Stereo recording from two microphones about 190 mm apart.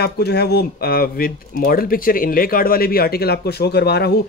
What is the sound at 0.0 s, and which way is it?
Speech, 60° left (ahead or behind).